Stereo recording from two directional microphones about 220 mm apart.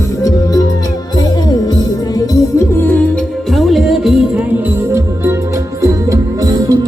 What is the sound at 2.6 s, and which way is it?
Music, 10° left (ahead or behind).